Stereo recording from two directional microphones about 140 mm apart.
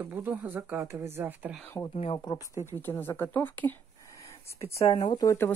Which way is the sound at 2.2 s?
30° left (ahead or behind).